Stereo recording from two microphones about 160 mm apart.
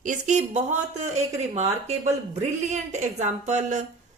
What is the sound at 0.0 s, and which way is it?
Speech, 50° right (ahead or behind).